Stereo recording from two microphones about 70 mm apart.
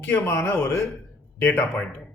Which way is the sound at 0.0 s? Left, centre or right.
Left.